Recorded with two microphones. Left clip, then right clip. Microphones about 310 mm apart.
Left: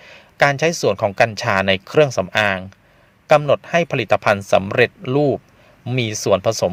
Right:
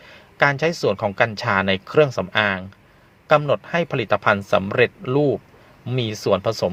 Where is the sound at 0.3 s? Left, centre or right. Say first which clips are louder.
Left 3 dB; left.